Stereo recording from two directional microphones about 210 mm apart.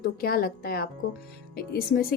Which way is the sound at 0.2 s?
45° left (ahead or behind).